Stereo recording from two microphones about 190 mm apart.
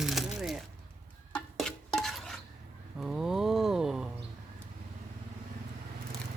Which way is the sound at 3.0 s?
Centre (ahead or behind).